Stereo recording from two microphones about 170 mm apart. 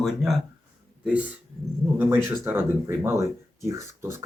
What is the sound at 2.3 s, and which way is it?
Speech, 15° right (ahead or behind).